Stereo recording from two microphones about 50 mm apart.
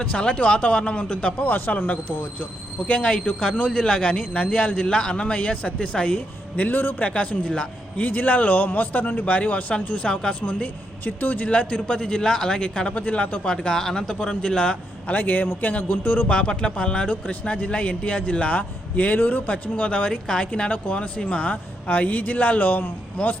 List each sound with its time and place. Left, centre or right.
0.0 s speech: left
1.4 s speech: left; by 6.1 s centre
6.6 s speech: left
7.0 s speech: left
7.9 s speech: left
11.0 s a man's voice: left; by 14.8 s centre
15.0 s speech: left